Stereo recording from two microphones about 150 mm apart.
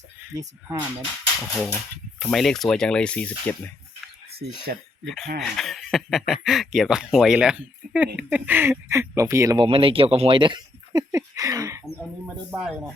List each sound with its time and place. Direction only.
1.4 s speech: centre (ahead or behind)
4.7 s speech: 90° right
5.0 s speech: centre (ahead or behind); by 9.6 s 20° right (ahead or behind)
9.6 s speech: 35° right (ahead or behind)
11.1 s a sound: 20° right (ahead or behind)
12.2 s speech: 5° right (ahead or behind)